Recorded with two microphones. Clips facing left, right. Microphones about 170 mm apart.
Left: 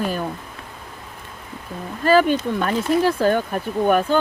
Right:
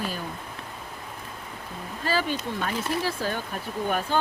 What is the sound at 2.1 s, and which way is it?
Speech, 55° left (ahead or behind).